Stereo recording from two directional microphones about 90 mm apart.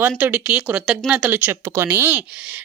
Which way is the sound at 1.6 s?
30° right (ahead or behind).